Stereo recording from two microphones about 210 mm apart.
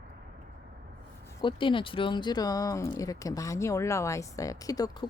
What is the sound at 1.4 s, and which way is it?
Speech, 25° left (ahead or behind).